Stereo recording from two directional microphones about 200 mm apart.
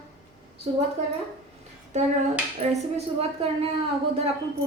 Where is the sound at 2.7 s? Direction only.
30° right (ahead or behind).